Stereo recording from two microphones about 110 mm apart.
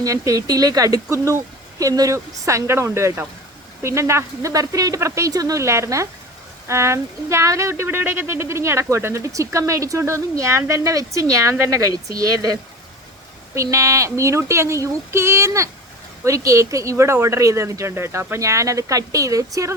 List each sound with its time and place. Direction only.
0.0 s speech: 30° right (ahead or behind)